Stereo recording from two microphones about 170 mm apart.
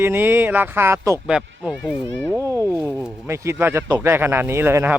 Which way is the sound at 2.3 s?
20° right (ahead or behind).